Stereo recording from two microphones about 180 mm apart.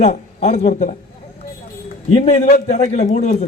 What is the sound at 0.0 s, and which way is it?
Speech, 40° left (ahead or behind).